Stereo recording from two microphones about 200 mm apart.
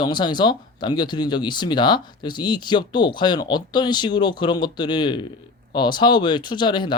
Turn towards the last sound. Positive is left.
turn(degrees=20)  # may be behind; listen again after turning